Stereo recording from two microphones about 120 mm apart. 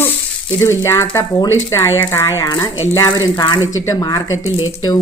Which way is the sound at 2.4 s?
35° left (ahead or behind).